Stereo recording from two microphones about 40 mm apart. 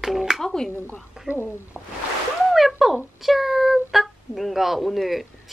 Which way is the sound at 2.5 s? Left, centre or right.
Centre.